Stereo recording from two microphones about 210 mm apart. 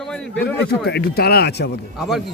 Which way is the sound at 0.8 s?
50° left (ahead or behind).